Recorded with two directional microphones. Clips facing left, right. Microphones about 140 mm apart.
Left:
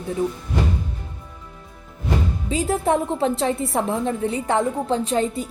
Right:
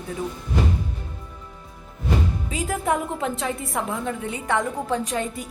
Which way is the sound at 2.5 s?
30° left (ahead or behind).